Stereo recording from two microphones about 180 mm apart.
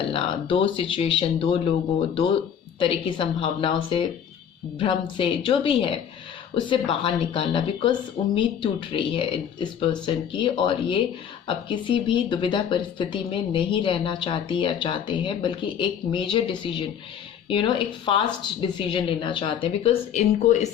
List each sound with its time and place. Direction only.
0.1 s speech: 30° left (ahead or behind)